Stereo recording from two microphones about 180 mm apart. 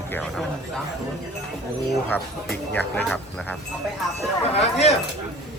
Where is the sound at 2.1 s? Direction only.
10° left (ahead or behind).